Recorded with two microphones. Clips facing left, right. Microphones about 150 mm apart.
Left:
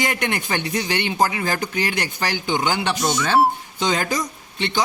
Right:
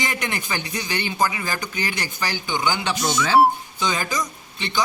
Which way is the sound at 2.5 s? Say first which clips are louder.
Left 2 dB; 65° left (ahead or behind).